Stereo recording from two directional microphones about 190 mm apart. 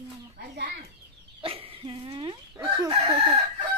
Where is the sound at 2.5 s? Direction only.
15° right (ahead or behind).